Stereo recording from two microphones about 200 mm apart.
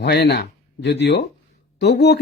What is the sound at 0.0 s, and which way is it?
Speech, 55° left (ahead or behind).